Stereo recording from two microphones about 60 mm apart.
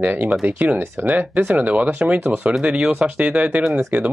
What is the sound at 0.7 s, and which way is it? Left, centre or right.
Speech, right.